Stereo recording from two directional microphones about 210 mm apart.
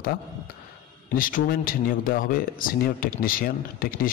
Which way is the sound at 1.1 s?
40° left (ahead or behind).